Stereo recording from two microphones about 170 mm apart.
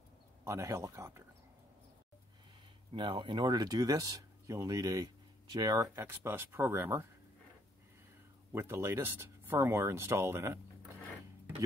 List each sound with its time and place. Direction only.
0.5 s speech: 15° right (ahead or behind)
2.9 s speech: 30° right (ahead or behind)
8.5 s speech: 15° right (ahead or behind)